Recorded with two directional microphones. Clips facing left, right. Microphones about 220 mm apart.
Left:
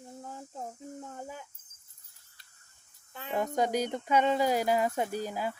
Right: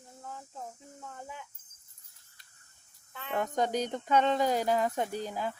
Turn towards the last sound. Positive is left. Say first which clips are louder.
# left 1 dB
turn(degrees=10)  # may be behind; listen again after turning